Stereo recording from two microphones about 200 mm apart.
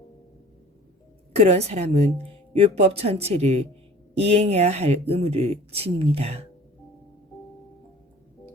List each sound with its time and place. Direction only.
1.4 s speech: 30° right (ahead or behind)